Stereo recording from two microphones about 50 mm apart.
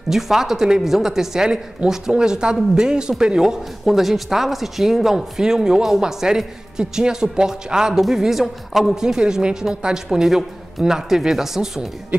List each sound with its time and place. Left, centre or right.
0.1 s speech: centre
12.1 s speech: right